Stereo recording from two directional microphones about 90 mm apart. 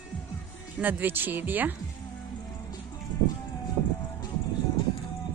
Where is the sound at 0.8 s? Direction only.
20° right (ahead or behind).